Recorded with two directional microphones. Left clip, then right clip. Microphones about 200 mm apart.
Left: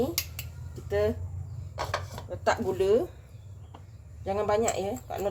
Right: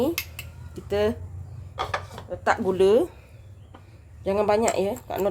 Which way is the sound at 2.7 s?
35° right (ahead or behind).